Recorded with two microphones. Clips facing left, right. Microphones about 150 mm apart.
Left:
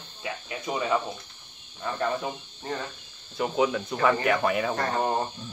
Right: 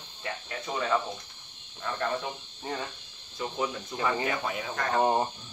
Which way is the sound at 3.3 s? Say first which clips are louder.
Left 7 dB; 75° left (ahead or behind).